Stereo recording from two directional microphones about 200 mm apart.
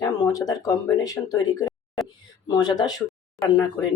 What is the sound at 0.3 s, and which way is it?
Speech, 20° left (ahead or behind).